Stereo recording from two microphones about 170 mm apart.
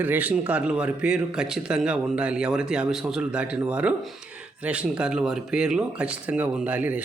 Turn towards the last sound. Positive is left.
turn(degrees=-10)  # may be behind; listen again after turning